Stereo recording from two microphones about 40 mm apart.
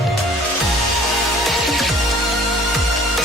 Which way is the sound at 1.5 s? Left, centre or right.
Centre.